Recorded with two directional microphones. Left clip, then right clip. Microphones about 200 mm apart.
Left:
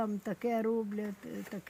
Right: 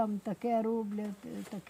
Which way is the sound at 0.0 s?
10° right (ahead or behind).